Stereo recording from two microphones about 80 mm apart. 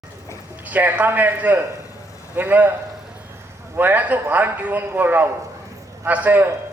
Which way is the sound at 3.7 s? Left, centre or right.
Right.